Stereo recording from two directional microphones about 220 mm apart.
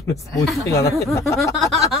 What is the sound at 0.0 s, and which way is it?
Speech, 15° left (ahead or behind).